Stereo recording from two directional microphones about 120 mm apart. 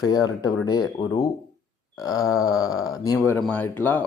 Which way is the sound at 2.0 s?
30° left (ahead or behind).